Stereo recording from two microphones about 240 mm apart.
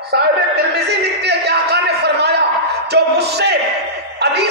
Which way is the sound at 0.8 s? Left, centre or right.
Right.